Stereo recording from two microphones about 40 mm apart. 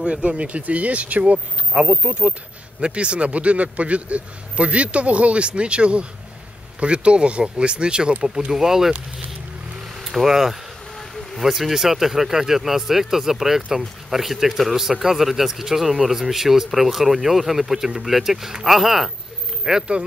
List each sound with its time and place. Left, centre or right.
0.0 s speech: right
8.5 s speech: centre
10.0 s speech: centre
11.0 s a sound: centre
11.4 s speech: centre